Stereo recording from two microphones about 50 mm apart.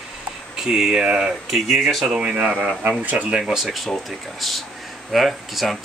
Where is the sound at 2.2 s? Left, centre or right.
Right.